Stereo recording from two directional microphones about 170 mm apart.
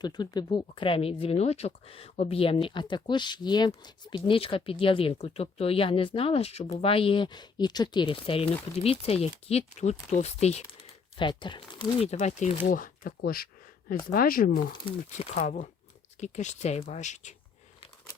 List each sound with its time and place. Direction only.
0.0 s speech: 25° left (ahead or behind); by 10.6 s 40° left (ahead or behind)
11.2 s speech: 30° left (ahead or behind)
12.0 s speech: 40° left (ahead or behind); by 14.8 s 60° left (ahead or behind)
14.8 s speech: 40° left (ahead or behind)